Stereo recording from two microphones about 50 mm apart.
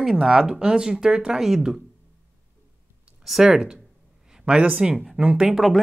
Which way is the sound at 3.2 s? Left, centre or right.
Centre.